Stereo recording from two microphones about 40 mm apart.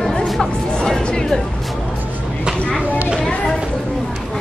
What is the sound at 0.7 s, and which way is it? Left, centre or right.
Music, centre.